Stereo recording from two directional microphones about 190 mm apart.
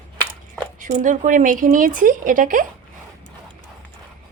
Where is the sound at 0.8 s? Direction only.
40° right (ahead or behind).